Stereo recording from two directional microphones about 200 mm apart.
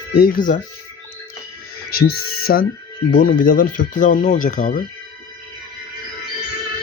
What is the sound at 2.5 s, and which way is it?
Speech, 50° left (ahead or behind).